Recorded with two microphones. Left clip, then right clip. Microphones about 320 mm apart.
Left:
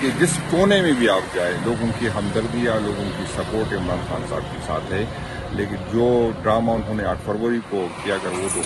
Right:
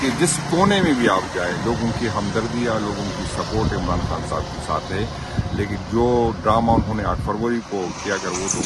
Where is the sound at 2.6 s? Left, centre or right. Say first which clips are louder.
Left 1 dB; right.